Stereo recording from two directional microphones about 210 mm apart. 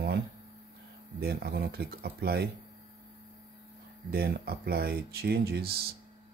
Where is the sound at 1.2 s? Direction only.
50° right (ahead or behind).